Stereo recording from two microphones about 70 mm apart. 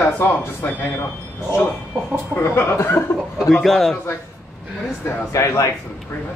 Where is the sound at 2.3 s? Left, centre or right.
Left.